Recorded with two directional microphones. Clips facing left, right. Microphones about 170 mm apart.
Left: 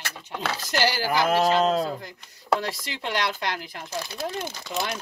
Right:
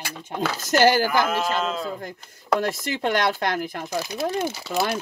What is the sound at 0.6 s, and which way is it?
Speech, 50° right (ahead or behind).